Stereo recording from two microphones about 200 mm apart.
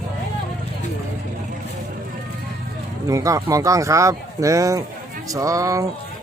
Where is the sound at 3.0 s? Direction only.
15° right (ahead or behind).